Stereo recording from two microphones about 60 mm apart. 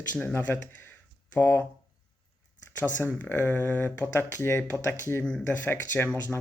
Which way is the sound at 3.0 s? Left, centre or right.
Left.